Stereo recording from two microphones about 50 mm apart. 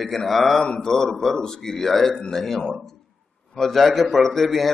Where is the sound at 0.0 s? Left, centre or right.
Centre.